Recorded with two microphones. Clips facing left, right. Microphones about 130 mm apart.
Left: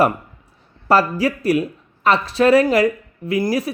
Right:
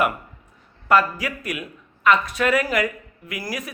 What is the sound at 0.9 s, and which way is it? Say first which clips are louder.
Speech: left 3 dB; 30° left (ahead or behind).